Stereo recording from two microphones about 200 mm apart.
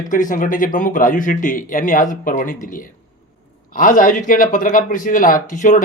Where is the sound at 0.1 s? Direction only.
40° left (ahead or behind).